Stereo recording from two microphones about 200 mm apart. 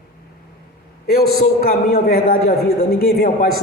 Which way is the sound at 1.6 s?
50° left (ahead or behind).